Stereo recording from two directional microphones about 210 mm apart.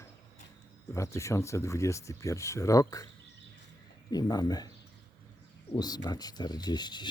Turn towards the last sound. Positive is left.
turn(degrees=20)  # may be behind; listen again after turning